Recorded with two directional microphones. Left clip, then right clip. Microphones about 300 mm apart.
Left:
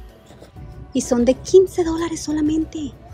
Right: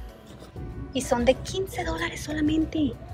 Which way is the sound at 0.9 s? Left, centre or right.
Left.